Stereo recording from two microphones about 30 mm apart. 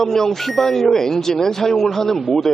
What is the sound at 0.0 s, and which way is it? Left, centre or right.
Speech, centre.